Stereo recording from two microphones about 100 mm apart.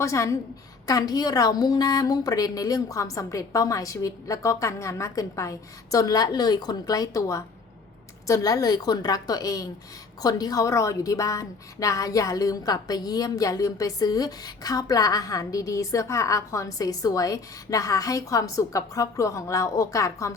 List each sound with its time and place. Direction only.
0.0 s a woman's voice: 30° left (ahead or behind)